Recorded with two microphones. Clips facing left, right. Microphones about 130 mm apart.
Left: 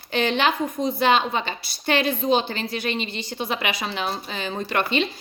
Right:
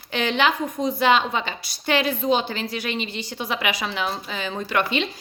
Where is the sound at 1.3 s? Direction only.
50° left (ahead or behind).